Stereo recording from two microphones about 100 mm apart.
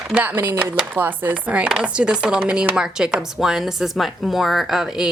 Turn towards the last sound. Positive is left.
turn(degrees=-5)  # may be behind; listen again after turning